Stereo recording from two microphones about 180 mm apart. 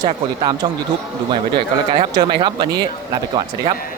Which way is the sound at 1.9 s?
25° right (ahead or behind).